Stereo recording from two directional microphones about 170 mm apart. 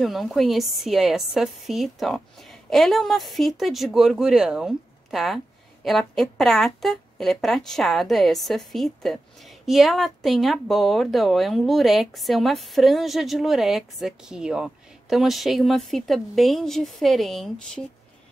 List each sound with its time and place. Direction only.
0.0 s a woman's voice: centre (ahead or behind)